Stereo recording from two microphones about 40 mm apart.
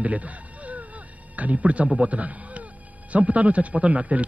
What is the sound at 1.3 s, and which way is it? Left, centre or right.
A man's voice, right.